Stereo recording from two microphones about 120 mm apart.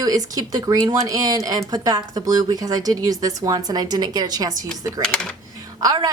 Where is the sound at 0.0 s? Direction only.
30° right (ahead or behind).